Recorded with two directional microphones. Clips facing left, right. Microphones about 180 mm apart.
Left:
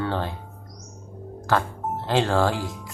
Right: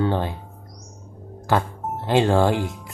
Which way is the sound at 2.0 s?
15° right (ahead or behind).